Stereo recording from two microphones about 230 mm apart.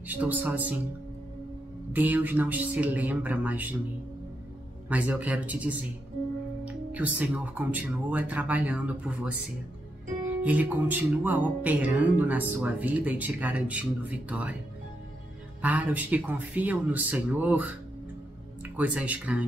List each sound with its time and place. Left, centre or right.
0.0 s speech: centre
1.9 s speech: centre
4.8 s speech: centre
15.6 s speech: centre